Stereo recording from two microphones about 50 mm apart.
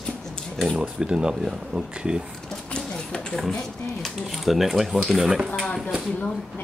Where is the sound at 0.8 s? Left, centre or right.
Centre.